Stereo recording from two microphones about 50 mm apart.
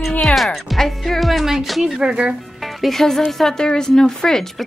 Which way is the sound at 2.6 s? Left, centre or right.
Centre.